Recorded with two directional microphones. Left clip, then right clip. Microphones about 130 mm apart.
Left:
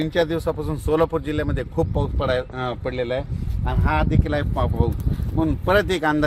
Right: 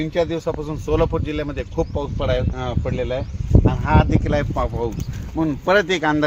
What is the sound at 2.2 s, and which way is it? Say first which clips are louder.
Speech: even; 15° right (ahead or behind).